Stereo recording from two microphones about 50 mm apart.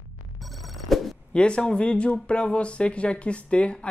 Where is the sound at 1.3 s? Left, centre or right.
Centre.